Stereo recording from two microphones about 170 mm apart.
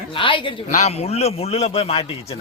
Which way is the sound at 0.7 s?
40° left (ahead or behind).